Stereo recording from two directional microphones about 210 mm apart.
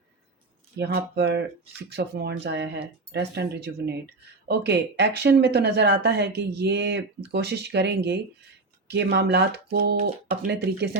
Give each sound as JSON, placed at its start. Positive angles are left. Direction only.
{"t": 0.8, "sound": "speech", "side_deg": -50}